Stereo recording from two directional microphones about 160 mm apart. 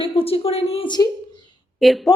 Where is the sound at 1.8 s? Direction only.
Centre (ahead or behind).